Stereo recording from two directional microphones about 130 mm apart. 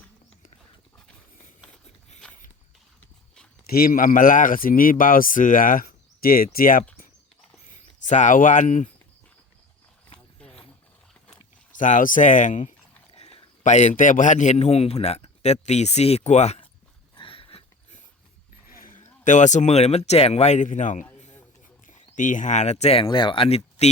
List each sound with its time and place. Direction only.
2.2 s a sound: 5° left (ahead or behind)
3.9 s speech: 90° left
7.7 s speech: 70° left (ahead or behind)
10.4 s a sound: 5° left (ahead or behind)
11.7 s speech: 85° left
13.1 s a man's voice: 50° left (ahead or behind)
17.2 s a sound: 45° left (ahead or behind)
18.7 s a man's voice: 90° left; by 23.0 s 55° left (ahead or behind)
23.0 s speech: 40° left (ahead or behind)